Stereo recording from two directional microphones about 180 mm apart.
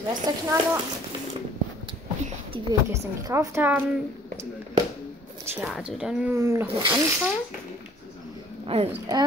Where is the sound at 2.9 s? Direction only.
15° right (ahead or behind).